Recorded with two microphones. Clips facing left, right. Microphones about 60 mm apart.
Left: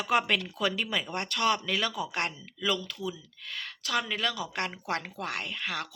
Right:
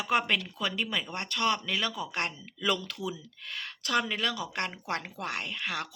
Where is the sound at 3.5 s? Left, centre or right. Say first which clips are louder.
Right 1 dB; right.